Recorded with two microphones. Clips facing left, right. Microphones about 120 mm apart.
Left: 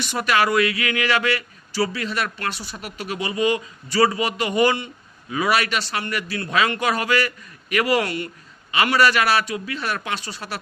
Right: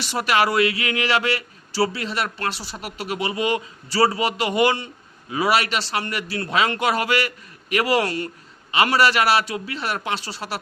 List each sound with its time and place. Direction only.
0.0 s speech: 30° right (ahead or behind)